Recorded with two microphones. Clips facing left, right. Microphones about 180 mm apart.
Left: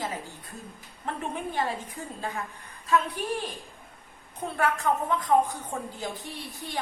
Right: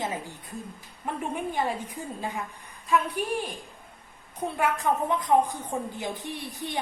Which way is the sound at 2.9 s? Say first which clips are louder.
Even; 10° right (ahead or behind).